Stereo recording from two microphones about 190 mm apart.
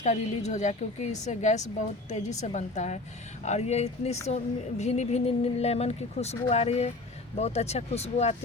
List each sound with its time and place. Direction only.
0.0 s a woman's voice: 40° left (ahead or behind)